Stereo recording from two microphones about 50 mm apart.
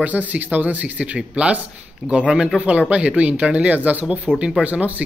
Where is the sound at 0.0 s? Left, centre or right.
Right.